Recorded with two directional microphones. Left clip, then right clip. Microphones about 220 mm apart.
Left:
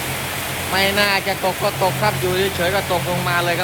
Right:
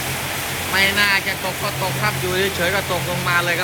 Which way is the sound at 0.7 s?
20° left (ahead or behind).